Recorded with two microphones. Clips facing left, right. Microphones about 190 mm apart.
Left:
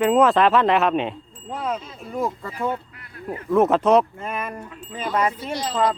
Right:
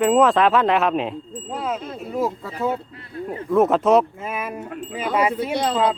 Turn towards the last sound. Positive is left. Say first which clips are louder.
# right 5 dB
turn(degrees=-60)  # may be behind; listen again after turning